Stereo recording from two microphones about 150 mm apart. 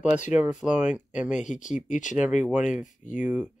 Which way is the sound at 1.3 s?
55° left (ahead or behind).